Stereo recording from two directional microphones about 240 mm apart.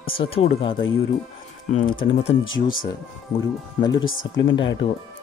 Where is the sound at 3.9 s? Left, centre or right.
Left.